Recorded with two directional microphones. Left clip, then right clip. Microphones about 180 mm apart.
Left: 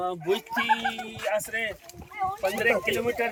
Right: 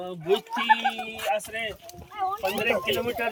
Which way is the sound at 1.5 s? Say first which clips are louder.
Left 2 dB; 25° left (ahead or behind).